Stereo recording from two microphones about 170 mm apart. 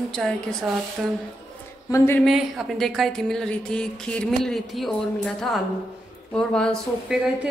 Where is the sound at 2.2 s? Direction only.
Centre (ahead or behind).